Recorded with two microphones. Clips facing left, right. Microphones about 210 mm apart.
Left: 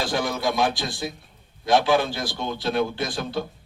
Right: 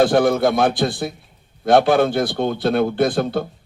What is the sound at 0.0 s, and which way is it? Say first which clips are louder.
A man's voice: right 10 dB; 55° right (ahead or behind).